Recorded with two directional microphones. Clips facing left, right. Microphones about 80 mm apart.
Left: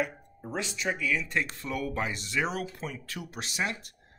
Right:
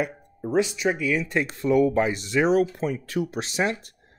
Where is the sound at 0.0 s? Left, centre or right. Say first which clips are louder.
Right 4 dB; centre.